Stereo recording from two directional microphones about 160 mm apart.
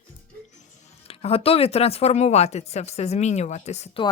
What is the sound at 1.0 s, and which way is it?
Speech, 40° left (ahead or behind).